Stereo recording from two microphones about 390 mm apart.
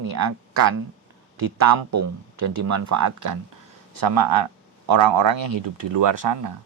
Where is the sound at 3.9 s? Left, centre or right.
Right.